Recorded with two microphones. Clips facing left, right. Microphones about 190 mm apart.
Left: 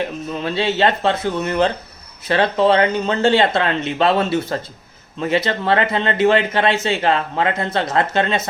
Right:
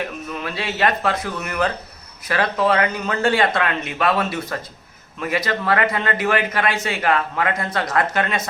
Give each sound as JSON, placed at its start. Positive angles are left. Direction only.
{"t": 0.0, "sound": "a man's voice", "side_deg": 25}